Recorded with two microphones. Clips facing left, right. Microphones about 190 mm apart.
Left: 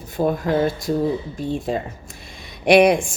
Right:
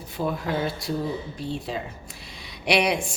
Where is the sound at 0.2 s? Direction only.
45° left (ahead or behind).